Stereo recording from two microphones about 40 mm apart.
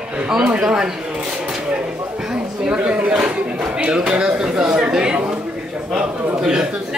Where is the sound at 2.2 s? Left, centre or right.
Right.